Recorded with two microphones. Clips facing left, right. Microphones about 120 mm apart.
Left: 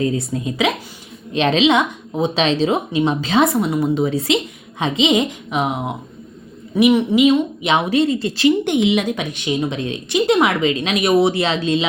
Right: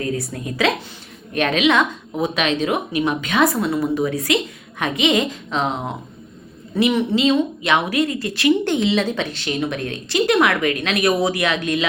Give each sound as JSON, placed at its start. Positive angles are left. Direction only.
{"t": 0.0, "sound": "a woman's voice", "side_deg": 20}